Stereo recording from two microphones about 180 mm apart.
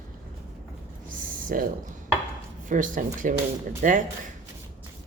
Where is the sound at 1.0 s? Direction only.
50° right (ahead or behind).